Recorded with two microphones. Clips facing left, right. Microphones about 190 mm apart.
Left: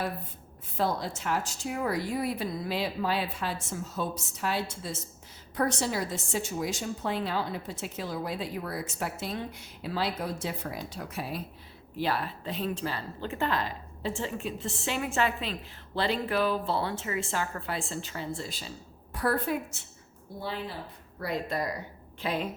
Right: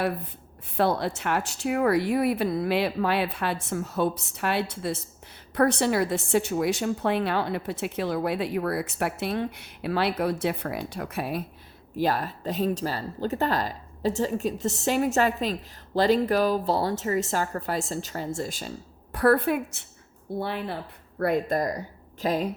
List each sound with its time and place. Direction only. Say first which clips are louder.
0.8 s a woman's voice: right 5 dB; 65° right (ahead or behind)
11.9 s a woman's voice: right 5 dB; 45° right (ahead or behind)
19.1 s a woman's voice: right 7 dB; 60° right (ahead or behind); by 22.4 s 40° right (ahead or behind)